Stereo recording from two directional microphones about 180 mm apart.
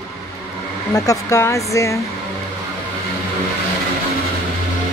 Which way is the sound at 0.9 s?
20° left (ahead or behind).